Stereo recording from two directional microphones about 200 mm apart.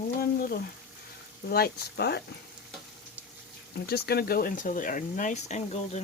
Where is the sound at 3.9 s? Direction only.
50° left (ahead or behind); by 6.0 s 35° left (ahead or behind).